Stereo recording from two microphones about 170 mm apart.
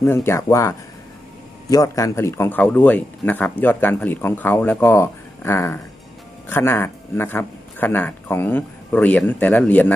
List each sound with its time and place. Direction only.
0.0 s speech: 15° left (ahead or behind)